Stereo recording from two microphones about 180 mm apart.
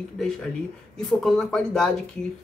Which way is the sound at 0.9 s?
Centre (ahead or behind).